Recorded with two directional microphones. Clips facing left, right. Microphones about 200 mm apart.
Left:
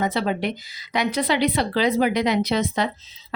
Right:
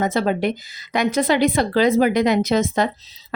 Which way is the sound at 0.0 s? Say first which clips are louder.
Right 4 dB; 45° right (ahead or behind).